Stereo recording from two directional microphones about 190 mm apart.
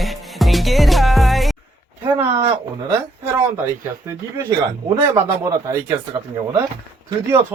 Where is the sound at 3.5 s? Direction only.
15° right (ahead or behind).